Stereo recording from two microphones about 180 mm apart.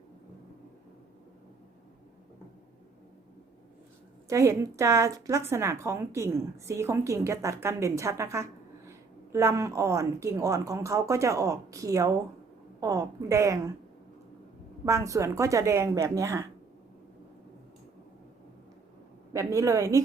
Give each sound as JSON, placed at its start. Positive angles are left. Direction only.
{"t": 4.3, "sound": "speech", "side_deg": -15}
{"t": 14.8, "sound": "speech", "side_deg": -15}
{"t": 19.3, "sound": "speech", "side_deg": -15}